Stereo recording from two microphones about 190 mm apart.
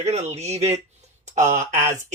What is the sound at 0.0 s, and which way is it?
Speech, 35° right (ahead or behind).